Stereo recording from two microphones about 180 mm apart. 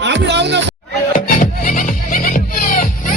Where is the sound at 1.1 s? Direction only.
45° left (ahead or behind).